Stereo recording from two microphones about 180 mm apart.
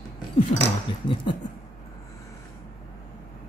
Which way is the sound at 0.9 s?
25° left (ahead or behind).